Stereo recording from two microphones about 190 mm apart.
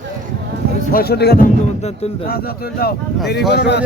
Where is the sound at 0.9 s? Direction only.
55° left (ahead or behind).